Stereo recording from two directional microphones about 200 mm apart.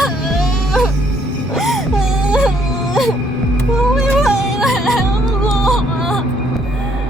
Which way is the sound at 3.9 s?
5° right (ahead or behind).